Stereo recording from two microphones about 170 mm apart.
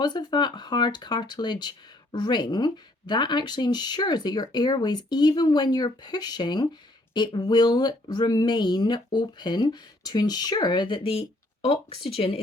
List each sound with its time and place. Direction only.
0.0 s speech: 25° left (ahead or behind)